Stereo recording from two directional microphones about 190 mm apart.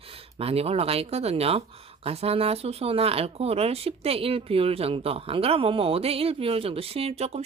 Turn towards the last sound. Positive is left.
turn(degrees=-35)  # may be behind; listen again after turning